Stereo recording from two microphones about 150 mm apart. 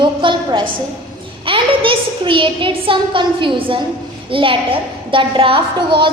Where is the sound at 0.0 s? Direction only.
35° right (ahead or behind).